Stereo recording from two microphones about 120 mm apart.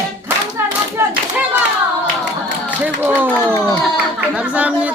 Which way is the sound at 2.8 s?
15° right (ahead or behind).